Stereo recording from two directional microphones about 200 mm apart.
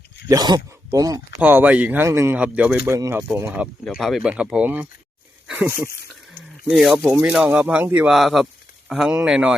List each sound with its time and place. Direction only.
0.3 s speech: 20° right (ahead or behind); by 9.6 s 5° right (ahead or behind)